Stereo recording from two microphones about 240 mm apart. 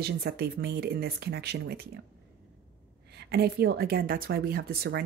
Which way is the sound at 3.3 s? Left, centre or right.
Right.